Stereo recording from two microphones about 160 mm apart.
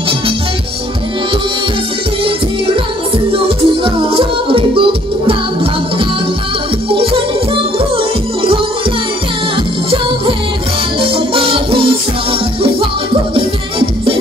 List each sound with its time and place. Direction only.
2.2 s music: 35° right (ahead or behind)
11.0 s music: 35° right (ahead or behind)